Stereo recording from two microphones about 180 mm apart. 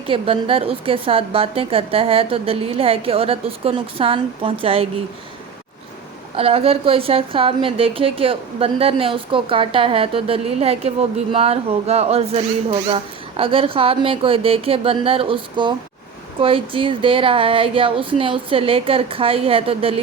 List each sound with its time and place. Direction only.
0.1 s a woman's voice: 30° right (ahead or behind)
6.3 s a woman's voice: 30° right (ahead or behind)